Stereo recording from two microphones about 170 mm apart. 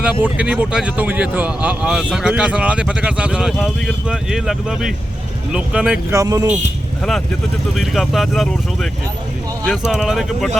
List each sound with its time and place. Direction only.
0.0 s speech: 5° right (ahead or behind)
6.1 s speech: 20° right (ahead or behind)
7.8 s speech: centre (ahead or behind)